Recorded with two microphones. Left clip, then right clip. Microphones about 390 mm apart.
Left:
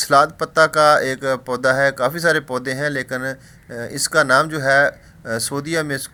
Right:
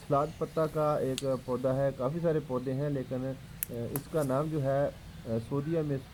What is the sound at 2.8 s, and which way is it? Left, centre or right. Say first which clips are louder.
Speech: left 13 dB; left.